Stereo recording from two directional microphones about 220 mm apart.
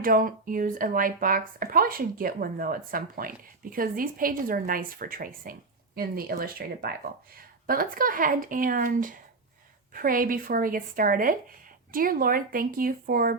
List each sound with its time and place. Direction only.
0.0 s speech: 40° right (ahead or behind)